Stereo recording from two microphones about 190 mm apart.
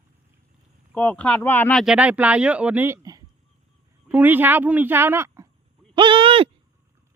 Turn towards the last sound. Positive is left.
turn(degrees=-30)  # may be behind; listen again after turning